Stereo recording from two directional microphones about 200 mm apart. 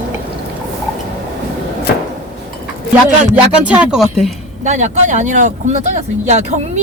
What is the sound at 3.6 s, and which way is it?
Speech, 5° right (ahead or behind).